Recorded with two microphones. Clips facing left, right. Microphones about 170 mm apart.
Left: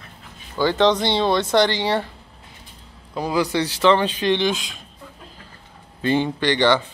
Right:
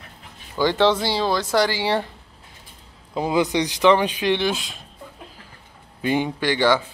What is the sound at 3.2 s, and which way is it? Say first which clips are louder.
Speech: right 1 dB; 20° right (ahead or behind).